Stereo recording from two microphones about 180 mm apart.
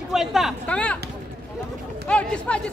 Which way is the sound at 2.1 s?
5° left (ahead or behind).